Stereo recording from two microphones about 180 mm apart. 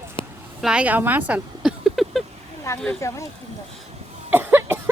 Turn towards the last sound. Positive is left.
turn(degrees=-10)  # may be behind; listen again after turning